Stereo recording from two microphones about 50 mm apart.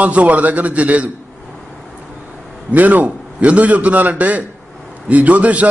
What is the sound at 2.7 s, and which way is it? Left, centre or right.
A man's voice, right.